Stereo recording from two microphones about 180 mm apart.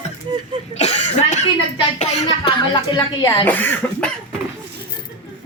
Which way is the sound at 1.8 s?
35° left (ahead or behind).